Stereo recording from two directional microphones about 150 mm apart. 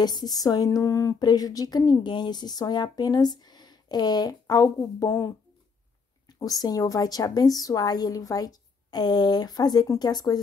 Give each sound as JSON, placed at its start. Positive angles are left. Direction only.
{"t": 0.0, "sound": "speech", "side_deg": 25}